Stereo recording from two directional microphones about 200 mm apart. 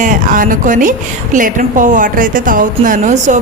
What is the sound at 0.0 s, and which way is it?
A woman's voice, 40° right (ahead or behind).